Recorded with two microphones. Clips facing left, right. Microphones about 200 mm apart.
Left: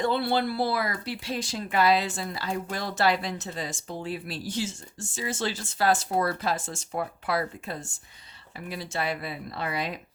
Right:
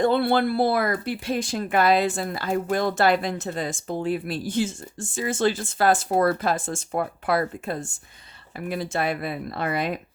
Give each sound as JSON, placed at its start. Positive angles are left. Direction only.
{"t": 0.0, "sound": "speech", "side_deg": -55}